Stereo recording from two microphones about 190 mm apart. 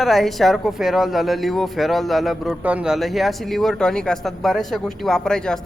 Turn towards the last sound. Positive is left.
turn(degrees=5)  # may be behind; listen again after turning